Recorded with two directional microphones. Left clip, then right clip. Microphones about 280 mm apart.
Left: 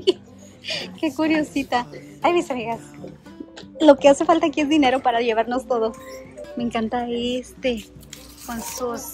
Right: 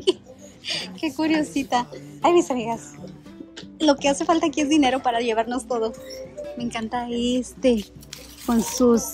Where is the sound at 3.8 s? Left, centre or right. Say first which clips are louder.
Left 7 dB; centre.